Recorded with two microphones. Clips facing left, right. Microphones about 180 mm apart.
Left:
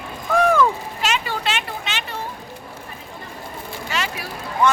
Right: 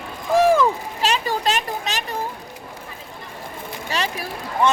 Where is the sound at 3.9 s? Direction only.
35° right (ahead or behind).